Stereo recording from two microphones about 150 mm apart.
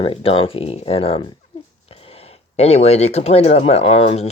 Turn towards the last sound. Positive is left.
turn(degrees=45)  # may be behind; listen again after turning